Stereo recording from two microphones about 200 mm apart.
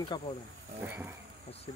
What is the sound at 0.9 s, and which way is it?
Speech, 10° right (ahead or behind).